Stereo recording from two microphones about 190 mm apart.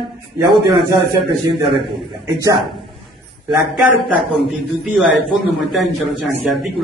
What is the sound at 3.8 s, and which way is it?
A man's voice, 5° right (ahead or behind).